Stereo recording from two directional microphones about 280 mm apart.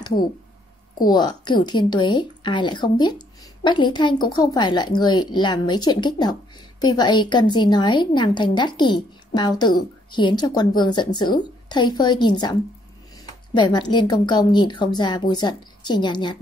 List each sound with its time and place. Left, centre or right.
1.0 s speech: centre